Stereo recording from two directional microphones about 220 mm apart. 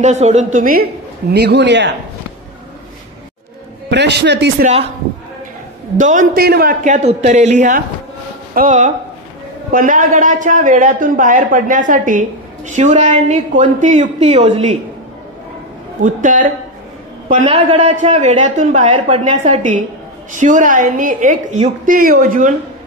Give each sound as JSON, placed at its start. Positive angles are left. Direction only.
{"t": 0.0, "sound": "a man's voice", "side_deg": -30}
{"t": 1.3, "sound": "a man's voice", "side_deg": -50}
{"t": 3.9, "sound": "a man's voice", "side_deg": -50}
{"t": 5.9, "sound": "a man's voice", "side_deg": -35}
{"t": 16.0, "sound": "a man's voice", "side_deg": -35}